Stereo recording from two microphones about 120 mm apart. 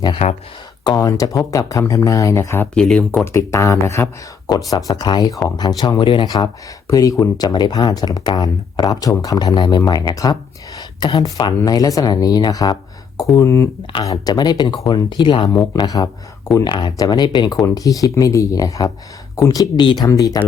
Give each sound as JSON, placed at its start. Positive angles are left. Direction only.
{"t": 0.9, "sound": "speech", "side_deg": 30}
{"t": 2.7, "sound": "speech", "side_deg": 10}
{"t": 3.3, "sound": "speech", "side_deg": 25}
{"t": 6.3, "sound": "speech", "side_deg": 30}
{"t": 15.5, "sound": "speech", "side_deg": 30}